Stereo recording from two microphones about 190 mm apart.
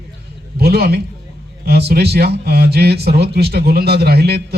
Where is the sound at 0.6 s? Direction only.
55° right (ahead or behind).